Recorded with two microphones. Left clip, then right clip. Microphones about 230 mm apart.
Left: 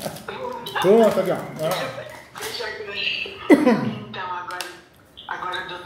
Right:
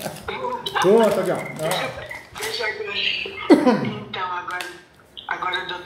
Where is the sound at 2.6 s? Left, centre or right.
Right.